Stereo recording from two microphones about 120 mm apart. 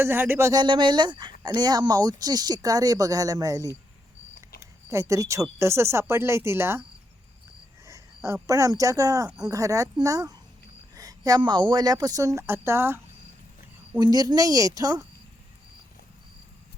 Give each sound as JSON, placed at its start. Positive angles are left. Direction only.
{"t": 0.0, "sound": "speech", "side_deg": -20}
{"t": 0.6, "sound": "speech", "side_deg": -40}
{"t": 4.9, "sound": "speech", "side_deg": -25}
{"t": 7.9, "sound": "speech", "side_deg": -25}
{"t": 14.0, "sound": "speech", "side_deg": -35}